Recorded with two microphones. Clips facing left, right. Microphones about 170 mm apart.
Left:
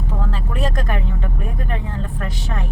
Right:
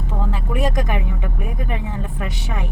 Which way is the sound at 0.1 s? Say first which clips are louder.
Right 3 dB; 15° right (ahead or behind).